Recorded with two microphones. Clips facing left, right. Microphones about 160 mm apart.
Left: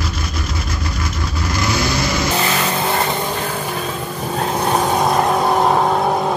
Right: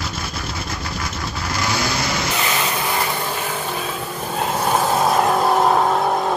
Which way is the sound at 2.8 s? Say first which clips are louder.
Left 4 dB; 20° left (ahead or behind).